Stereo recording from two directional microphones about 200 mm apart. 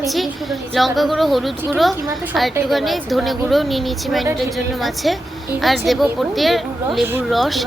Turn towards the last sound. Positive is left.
turn(degrees=0)  # may be behind; listen again after turning